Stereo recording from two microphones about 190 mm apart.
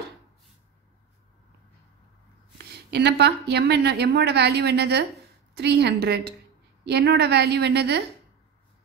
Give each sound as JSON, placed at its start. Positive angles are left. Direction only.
{"t": 2.6, "sound": "a woman's voice", "side_deg": -60}